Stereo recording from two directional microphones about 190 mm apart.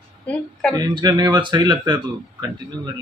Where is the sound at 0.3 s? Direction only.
5° left (ahead or behind).